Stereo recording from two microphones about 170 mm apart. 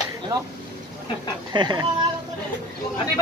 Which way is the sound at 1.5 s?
25° right (ahead or behind).